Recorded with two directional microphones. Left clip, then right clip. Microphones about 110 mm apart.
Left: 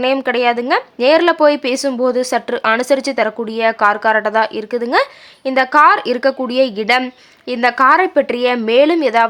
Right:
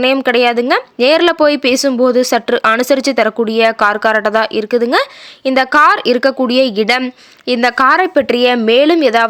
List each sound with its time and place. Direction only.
0.0 s speech: 35° right (ahead or behind)